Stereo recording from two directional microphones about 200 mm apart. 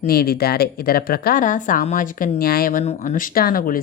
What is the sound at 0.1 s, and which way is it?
A woman's voice, 50° left (ahead or behind).